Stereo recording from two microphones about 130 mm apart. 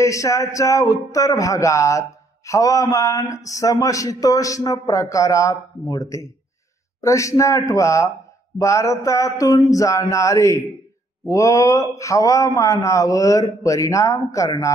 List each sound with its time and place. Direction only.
0.0 s speech: 25° left (ahead or behind)